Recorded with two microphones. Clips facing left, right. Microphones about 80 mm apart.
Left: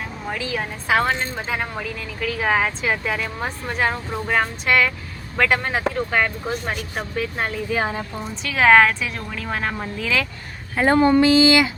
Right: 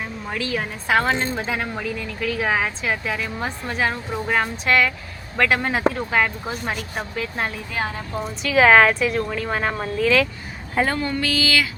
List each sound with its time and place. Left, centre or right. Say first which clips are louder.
0.3 s speech: even; centre
7.8 s speech: left 1 dB; centre
8.1 s speech: right 6 dB; centre
10.8 s speech: left 9 dB; left